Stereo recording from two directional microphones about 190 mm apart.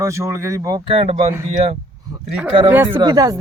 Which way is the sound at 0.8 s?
30° right (ahead or behind).